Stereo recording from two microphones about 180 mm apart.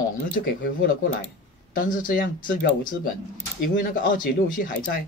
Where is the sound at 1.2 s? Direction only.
50° left (ahead or behind).